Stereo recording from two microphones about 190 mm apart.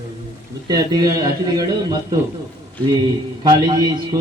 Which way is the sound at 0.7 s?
20° right (ahead or behind).